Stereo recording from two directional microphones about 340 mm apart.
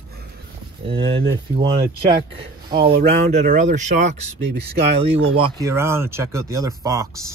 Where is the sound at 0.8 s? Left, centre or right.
Centre.